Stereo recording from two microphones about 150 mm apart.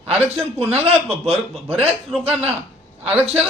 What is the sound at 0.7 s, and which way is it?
A man's voice, 45° right (ahead or behind).